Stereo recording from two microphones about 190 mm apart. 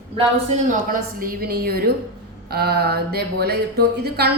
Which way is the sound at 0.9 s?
50° right (ahead or behind).